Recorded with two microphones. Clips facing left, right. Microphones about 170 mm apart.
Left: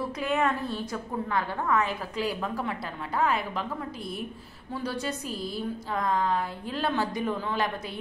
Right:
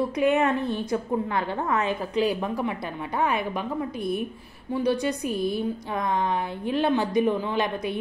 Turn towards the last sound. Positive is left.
turn(degrees=-20)  # may be behind; listen again after turning